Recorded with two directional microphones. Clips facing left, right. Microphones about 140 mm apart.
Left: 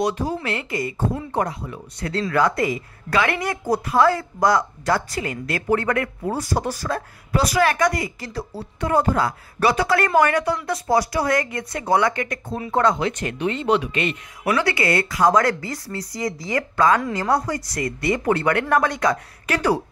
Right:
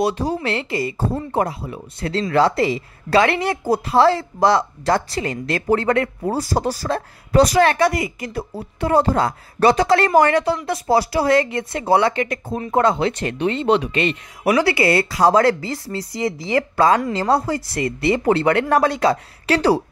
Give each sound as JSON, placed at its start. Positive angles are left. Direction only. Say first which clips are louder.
{"t": 0.0, "sound": "speech", "louder": "right 3 dB", "side_deg": -30}